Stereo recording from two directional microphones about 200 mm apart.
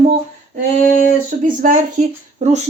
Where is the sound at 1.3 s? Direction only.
40° right (ahead or behind).